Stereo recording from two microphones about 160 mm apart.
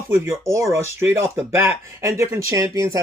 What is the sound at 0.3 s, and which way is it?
Speech, 20° right (ahead or behind).